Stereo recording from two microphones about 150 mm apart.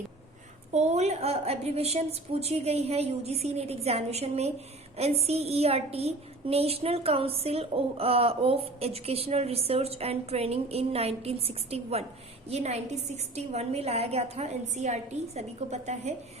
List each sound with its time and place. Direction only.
0.7 s a woman's voice: 50° right (ahead or behind)